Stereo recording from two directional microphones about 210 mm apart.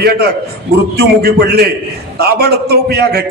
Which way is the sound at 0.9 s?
50° right (ahead or behind).